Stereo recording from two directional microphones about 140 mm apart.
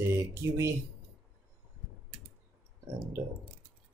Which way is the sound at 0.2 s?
20° right (ahead or behind).